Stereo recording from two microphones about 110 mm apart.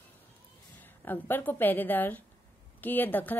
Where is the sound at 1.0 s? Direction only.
20° left (ahead or behind).